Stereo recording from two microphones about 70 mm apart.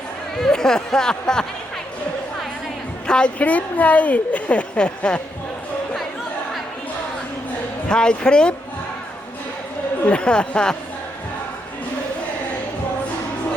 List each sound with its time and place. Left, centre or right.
0.3 s speech: centre
3.1 s a woman's voice: centre
7.9 s speech: centre
10.1 s speech: centre